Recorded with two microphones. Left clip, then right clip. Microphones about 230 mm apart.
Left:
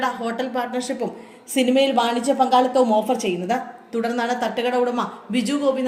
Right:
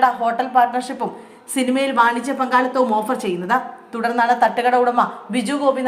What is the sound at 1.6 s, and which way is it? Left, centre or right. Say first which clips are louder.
Speech: left 1 dB; right.